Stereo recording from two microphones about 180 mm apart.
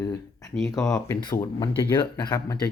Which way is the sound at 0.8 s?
5° left (ahead or behind).